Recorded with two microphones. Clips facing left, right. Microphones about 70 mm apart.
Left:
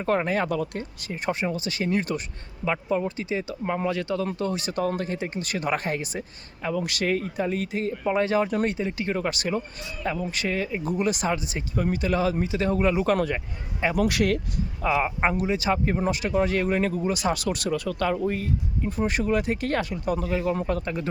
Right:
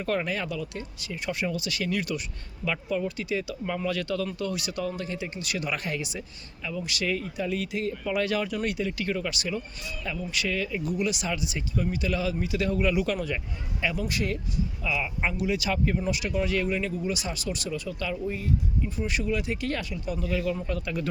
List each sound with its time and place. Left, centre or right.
0.0 s speech: left
9.1 s speech: left
13.9 s speech: left
14.8 s speech: left